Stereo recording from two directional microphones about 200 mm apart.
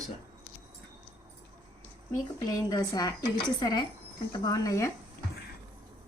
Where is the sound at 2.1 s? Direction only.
20° left (ahead or behind).